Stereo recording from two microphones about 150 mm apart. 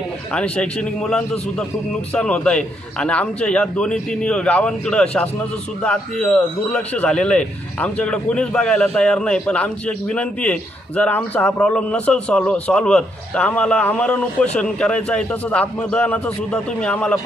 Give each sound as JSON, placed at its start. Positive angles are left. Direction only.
{"t": 0.3, "sound": "a man's voice", "side_deg": 5}